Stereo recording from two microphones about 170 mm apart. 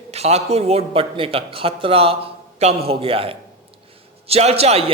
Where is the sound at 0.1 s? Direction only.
40° right (ahead or behind).